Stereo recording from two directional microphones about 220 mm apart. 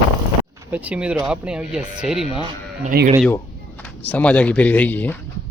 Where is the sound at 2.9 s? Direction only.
45° right (ahead or behind).